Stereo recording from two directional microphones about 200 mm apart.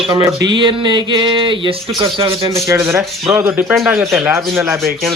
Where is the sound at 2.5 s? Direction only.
15° right (ahead or behind).